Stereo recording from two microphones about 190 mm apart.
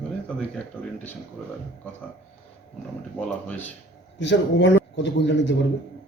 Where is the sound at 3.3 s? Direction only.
5° left (ahead or behind).